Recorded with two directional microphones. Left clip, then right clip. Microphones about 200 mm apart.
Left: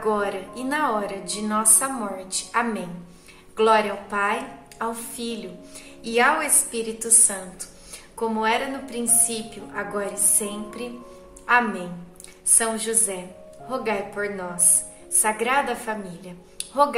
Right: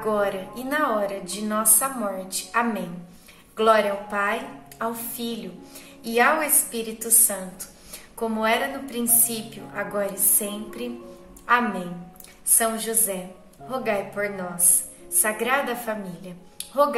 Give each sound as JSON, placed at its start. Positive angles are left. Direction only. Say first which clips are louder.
{"t": 0.0, "sound": "a woman's voice", "louder": "even", "side_deg": 20}
{"t": 12.5, "sound": "a woman's voice", "louder": "even", "side_deg": 15}
{"t": 16.5, "sound": "a sound", "louder": "left 1 dB", "side_deg": 20}